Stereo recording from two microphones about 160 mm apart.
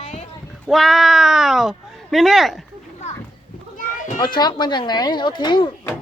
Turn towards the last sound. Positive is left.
turn(degrees=30)  # may be behind; listen again after turning